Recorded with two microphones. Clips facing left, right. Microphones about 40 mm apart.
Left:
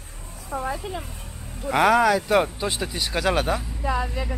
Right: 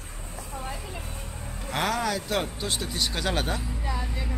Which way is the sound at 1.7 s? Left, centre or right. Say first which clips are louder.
Left 9 dB; centre.